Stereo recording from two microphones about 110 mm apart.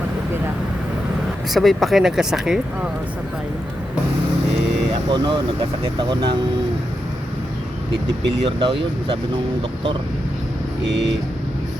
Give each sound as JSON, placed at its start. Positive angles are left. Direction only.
{"t": 1.5, "sound": "speech", "side_deg": 0}
{"t": 5.1, "sound": "speech", "side_deg": -45}
{"t": 8.4, "sound": "speech", "side_deg": -55}